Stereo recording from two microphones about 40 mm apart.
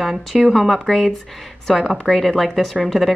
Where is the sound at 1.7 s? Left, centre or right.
Centre.